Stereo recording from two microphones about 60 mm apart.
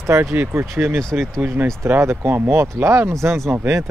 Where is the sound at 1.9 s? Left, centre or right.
Right.